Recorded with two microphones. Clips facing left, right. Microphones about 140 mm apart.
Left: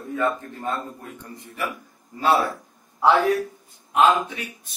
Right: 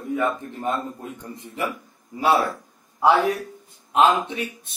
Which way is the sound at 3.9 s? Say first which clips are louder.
Even; 25° right (ahead or behind).